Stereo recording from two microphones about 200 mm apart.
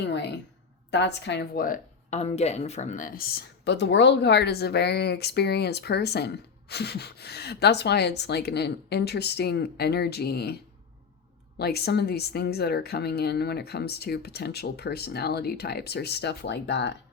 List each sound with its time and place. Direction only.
0.1 s a woman's voice: 60° left (ahead or behind)